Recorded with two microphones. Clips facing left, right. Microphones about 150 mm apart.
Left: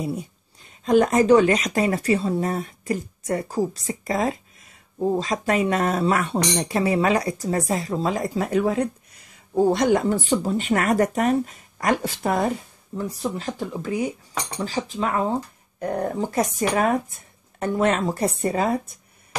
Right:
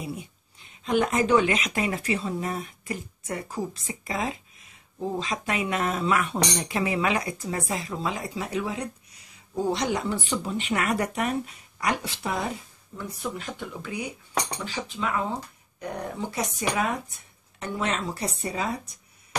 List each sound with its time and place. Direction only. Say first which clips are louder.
0.0 s speech: left 7 dB; 40° left (ahead or behind)
12.9 s speech: left 6 dB; 35° left (ahead or behind)